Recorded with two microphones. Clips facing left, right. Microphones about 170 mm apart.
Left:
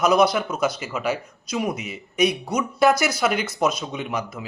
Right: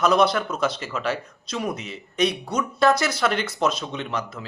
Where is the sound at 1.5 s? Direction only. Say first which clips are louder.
Left 2 dB; 15° left (ahead or behind).